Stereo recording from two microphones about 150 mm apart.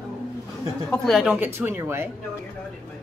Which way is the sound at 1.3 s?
15° right (ahead or behind).